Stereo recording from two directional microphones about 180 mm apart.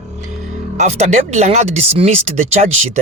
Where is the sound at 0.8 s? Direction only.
40° right (ahead or behind).